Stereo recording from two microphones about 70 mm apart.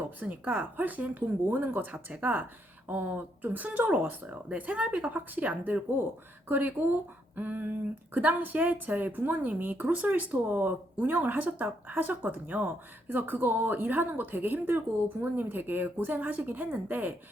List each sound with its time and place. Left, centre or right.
0.0 s speech: right